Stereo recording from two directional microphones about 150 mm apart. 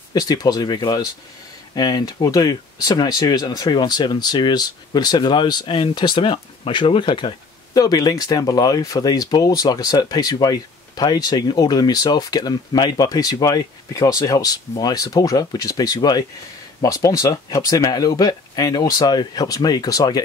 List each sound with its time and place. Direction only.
0.1 s speech: 25° left (ahead or behind)